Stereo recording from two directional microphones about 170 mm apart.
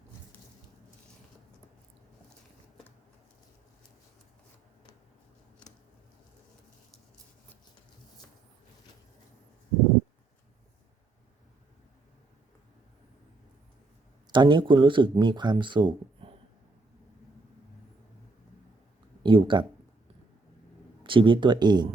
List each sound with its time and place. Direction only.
14.3 s speech: 30° right (ahead or behind)
19.2 s speech: 30° right (ahead or behind)
21.0 s speech: 30° right (ahead or behind)